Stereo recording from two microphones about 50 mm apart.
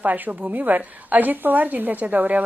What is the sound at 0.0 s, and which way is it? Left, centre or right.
Speech, right.